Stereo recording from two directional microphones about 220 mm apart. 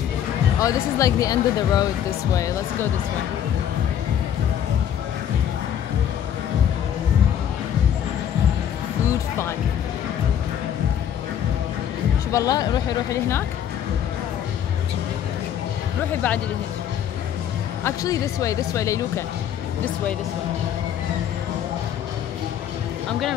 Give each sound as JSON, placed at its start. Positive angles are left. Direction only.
{"t": 0.6, "sound": "speech", "side_deg": 15}
{"t": 12.3, "sound": "speech", "side_deg": 15}
{"t": 17.8, "sound": "speech", "side_deg": 15}